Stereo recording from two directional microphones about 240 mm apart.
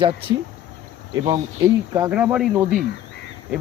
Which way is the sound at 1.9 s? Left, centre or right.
Centre.